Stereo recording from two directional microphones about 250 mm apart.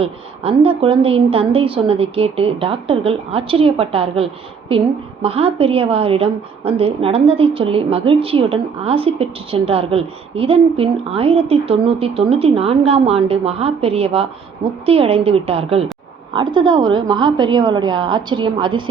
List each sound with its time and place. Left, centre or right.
0.0 s a woman's voice: right